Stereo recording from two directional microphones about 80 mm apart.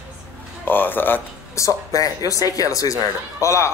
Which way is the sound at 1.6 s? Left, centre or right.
Left.